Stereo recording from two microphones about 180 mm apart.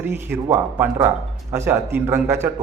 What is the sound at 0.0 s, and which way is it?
A man's voice, 10° right (ahead or behind).